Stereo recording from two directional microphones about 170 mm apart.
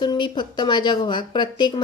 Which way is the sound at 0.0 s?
25° left (ahead or behind).